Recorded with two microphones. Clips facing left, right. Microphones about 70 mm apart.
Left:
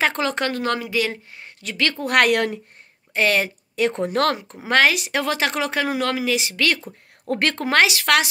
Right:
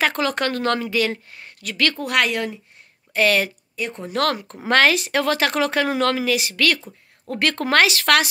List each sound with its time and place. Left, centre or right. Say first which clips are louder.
0.0 s a woman's voice: even; left
2.0 s a woman's voice: left 8 dB; left
3.1 s speech: right 1 dB; left
3.7 s speech: left 10 dB; left
4.1 s speech: right 4 dB; left
4.6 s speech: right 1 dB; centre
7.2 s speech: left 1 dB; left
7.5 s a woman's voice: right 2 dB; centre